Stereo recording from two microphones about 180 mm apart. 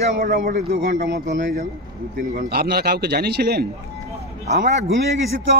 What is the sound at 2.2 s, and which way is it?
A man's voice, 55° right (ahead or behind).